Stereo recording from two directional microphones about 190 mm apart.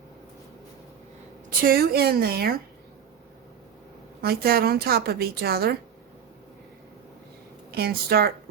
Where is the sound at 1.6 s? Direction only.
50° right (ahead or behind).